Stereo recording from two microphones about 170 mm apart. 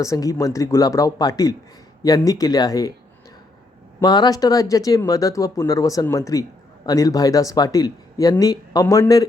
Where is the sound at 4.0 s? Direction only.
25° left (ahead or behind).